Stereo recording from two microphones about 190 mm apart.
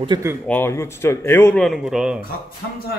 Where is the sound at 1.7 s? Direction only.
Centre (ahead or behind).